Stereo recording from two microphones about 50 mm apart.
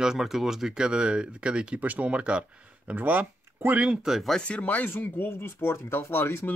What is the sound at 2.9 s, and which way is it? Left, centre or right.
Speech, right.